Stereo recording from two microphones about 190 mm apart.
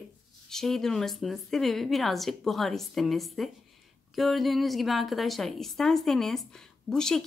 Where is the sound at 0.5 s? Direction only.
Centre (ahead or behind).